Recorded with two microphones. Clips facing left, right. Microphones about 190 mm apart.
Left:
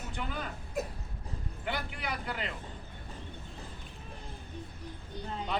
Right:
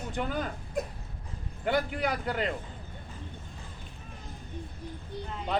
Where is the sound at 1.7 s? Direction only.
45° right (ahead or behind).